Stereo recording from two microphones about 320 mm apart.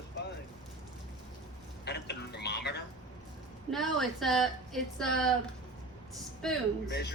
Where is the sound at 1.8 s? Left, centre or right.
Left.